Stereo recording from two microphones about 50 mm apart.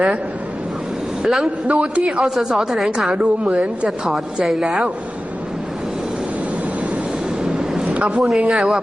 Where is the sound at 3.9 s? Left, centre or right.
Centre.